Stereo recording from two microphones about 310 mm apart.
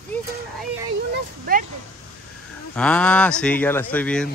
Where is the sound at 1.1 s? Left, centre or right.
Right.